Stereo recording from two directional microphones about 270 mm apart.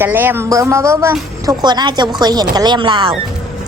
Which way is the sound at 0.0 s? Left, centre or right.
Centre.